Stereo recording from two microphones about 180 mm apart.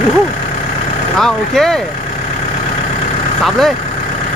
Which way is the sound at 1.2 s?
Centre (ahead or behind).